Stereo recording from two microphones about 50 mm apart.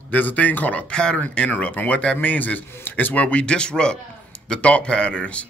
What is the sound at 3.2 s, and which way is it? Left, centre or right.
A man's voice, left.